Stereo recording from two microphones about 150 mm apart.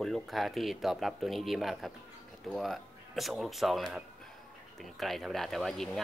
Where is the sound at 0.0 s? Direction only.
Centre (ahead or behind).